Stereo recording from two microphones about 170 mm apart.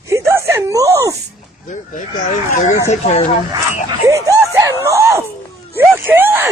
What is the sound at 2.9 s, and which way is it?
Speech, 40° left (ahead or behind).